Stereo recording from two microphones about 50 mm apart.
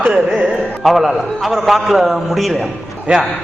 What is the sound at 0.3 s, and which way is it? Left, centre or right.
A man's voice, centre.